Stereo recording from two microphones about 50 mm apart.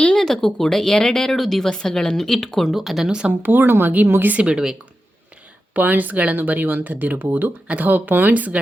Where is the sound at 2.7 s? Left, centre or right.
Centre.